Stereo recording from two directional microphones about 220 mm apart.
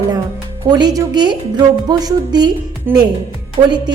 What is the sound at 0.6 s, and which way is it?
A woman's voice, 20° right (ahead or behind).